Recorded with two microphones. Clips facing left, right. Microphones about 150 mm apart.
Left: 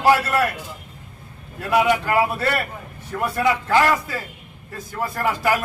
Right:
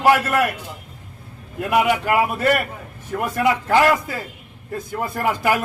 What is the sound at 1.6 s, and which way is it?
A man's voice, 15° right (ahead or behind).